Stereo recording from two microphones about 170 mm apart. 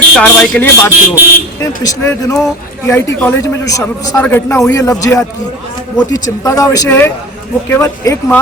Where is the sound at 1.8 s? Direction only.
20° left (ahead or behind).